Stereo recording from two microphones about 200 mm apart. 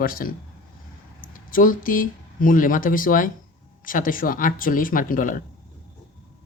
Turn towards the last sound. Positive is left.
turn(degrees=45)  # may be behind; listen again after turning